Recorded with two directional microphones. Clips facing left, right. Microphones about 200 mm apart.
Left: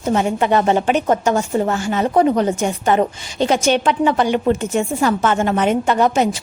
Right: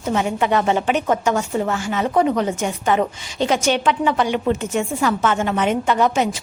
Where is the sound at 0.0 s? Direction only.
40° left (ahead or behind).